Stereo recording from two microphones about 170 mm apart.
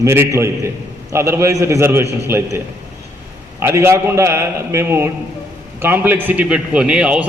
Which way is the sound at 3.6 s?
15° right (ahead or behind).